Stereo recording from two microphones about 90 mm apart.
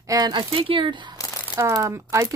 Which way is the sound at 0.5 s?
75° right (ahead or behind).